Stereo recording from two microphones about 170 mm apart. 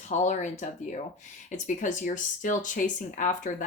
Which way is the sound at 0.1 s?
45° left (ahead or behind).